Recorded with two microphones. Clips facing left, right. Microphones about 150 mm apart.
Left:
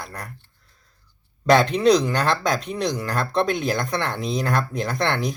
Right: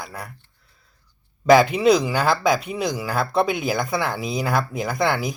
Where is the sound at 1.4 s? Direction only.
5° right (ahead or behind).